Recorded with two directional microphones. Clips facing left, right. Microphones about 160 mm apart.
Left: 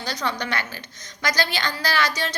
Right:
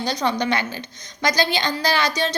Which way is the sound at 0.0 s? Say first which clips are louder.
Right 6 dB; 20° right (ahead or behind).